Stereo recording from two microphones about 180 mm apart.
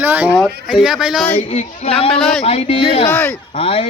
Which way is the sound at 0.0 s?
10° right (ahead or behind).